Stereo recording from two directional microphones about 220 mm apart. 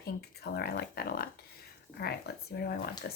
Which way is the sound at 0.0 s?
45° left (ahead or behind).